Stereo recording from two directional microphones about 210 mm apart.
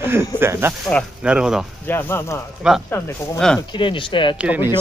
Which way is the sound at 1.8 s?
10° left (ahead or behind).